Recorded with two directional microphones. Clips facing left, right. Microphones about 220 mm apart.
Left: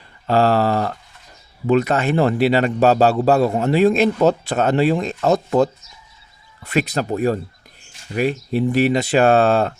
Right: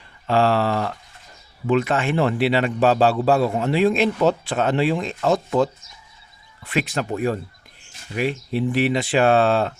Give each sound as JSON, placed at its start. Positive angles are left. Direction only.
{"t": 0.3, "sound": "a man's voice", "side_deg": 40}
{"t": 6.7, "sound": "a man's voice", "side_deg": 40}